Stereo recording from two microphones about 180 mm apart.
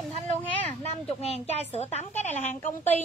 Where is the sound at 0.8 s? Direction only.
35° left (ahead or behind).